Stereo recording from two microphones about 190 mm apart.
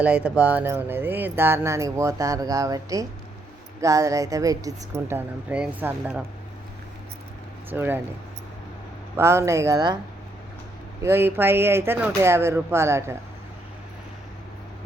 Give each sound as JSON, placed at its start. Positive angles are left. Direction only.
{"t": 0.0, "sound": "speech", "side_deg": -5}
{"t": 7.7, "sound": "speech", "side_deg": -10}
{"t": 9.1, "sound": "speech", "side_deg": -15}
{"t": 11.0, "sound": "speech", "side_deg": -15}